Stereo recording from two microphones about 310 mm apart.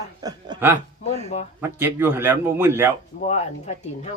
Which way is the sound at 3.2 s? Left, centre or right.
Left.